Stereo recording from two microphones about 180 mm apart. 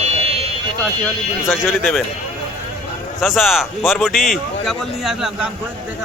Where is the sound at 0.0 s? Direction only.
35° right (ahead or behind).